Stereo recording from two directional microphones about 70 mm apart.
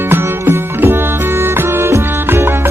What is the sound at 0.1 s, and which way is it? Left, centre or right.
Music, right.